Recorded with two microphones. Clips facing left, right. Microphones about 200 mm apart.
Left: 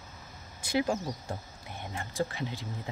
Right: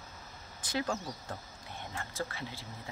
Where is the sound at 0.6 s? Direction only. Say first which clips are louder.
Left 6 dB; 15° left (ahead or behind).